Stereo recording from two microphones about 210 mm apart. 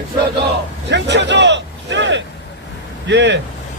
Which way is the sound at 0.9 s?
55° right (ahead or behind).